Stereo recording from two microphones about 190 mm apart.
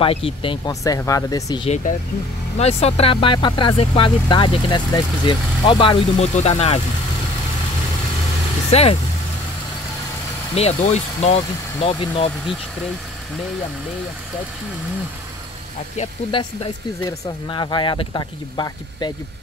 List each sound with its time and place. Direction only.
0.0 s speech: 30° left (ahead or behind)
2.6 s speech: 35° left (ahead or behind)
8.7 s speech: 35° left (ahead or behind)
10.5 s speech: 35° left (ahead or behind)
16.0 s speech: 30° left (ahead or behind)